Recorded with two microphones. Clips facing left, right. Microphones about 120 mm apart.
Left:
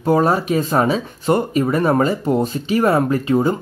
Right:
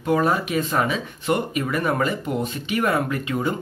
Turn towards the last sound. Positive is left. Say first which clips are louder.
# left 8 dB
turn(degrees=35)  # may be behind; listen again after turning